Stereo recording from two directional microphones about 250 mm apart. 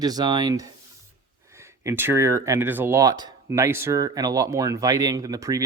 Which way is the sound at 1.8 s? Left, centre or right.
Centre.